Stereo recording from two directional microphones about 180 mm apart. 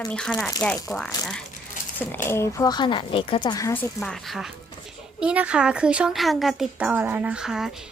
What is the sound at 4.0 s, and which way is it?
A child's voice, centre (ahead or behind).